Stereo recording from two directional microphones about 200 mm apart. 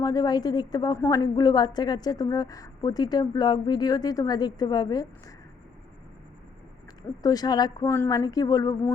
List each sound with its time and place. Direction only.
0.0 s a woman's voice: 20° left (ahead or behind)
7.2 s speech: 20° left (ahead or behind)